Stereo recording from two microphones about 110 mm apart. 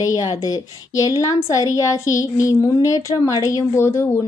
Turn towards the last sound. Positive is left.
turn(degrees=25)  # may be behind; listen again after turning